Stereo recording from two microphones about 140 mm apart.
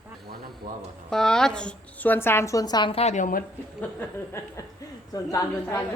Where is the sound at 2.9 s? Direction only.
50° left (ahead or behind).